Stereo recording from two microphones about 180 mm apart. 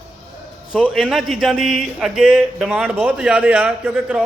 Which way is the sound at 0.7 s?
5° right (ahead or behind).